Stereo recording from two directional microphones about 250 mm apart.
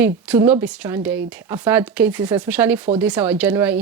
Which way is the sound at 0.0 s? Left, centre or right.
Centre.